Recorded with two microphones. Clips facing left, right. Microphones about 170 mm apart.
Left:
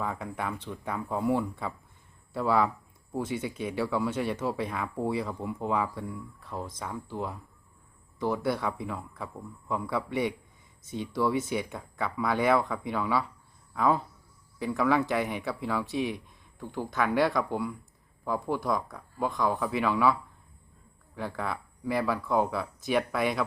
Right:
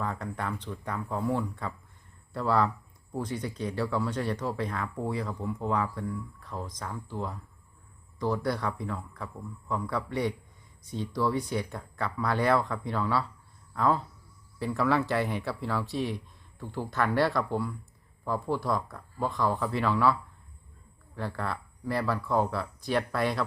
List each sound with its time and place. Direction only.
0.0 s speech: 5° left (ahead or behind)
21.2 s speech: centre (ahead or behind)